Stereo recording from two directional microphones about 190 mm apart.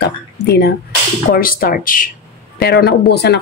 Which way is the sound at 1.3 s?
50° left (ahead or behind).